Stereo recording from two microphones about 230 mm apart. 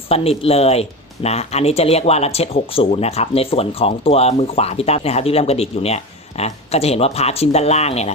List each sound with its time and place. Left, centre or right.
0.1 s speech: left